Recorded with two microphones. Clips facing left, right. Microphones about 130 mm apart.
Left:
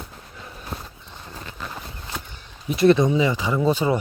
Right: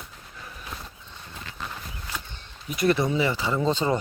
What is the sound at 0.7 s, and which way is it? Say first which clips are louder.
Walk: left 6 dB; 35° left (ahead or behind).